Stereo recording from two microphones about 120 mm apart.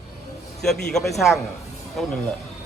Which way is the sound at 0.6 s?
5° left (ahead or behind).